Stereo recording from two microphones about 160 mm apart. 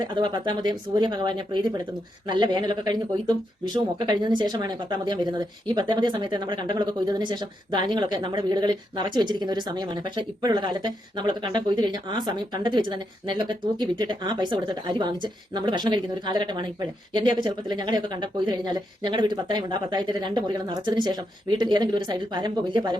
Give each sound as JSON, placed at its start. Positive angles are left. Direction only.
{"t": 0.0, "sound": "speech", "side_deg": -30}
{"t": 4.0, "sound": "speech", "side_deg": -25}